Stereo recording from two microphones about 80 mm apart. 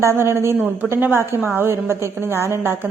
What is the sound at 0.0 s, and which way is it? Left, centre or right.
A woman's voice, right.